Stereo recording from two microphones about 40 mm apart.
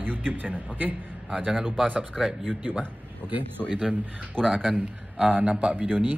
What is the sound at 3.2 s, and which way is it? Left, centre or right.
Speech, right.